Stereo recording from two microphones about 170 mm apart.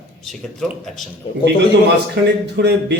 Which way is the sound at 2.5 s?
75° right (ahead or behind).